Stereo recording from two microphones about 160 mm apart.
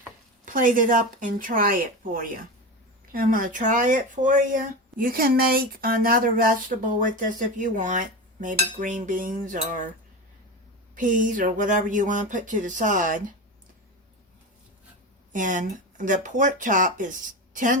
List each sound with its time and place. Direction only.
0.4 s speech: 55° right (ahead or behind)
10.9 s speech: 55° right (ahead or behind)
15.3 s speech: 55° right (ahead or behind)